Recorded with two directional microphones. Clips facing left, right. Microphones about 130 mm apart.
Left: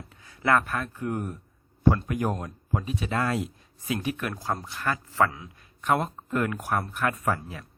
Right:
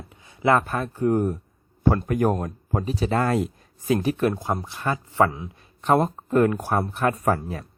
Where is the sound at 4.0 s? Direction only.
30° right (ahead or behind).